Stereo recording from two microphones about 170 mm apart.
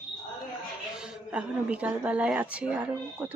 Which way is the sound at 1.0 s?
5° right (ahead or behind).